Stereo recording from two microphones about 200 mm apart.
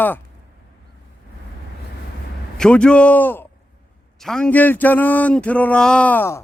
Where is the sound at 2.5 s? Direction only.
5° left (ahead or behind).